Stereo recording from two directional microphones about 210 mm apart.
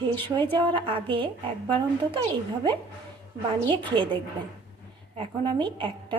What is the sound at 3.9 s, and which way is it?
A woman's voice, 25° right (ahead or behind).